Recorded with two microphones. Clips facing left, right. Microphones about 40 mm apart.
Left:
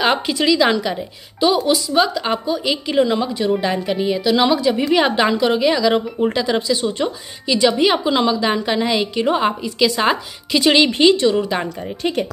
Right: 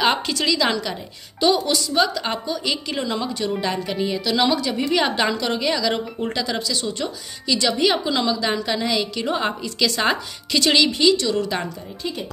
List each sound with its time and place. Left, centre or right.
0.3 s a woman's voice: centre
10.9 s a woman's voice: left; by 11.7 s centre